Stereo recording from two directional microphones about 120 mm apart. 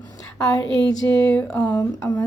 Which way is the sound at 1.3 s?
10° left (ahead or behind).